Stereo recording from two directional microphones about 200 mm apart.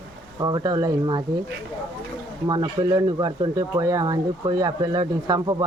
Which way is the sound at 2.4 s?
20° right (ahead or behind).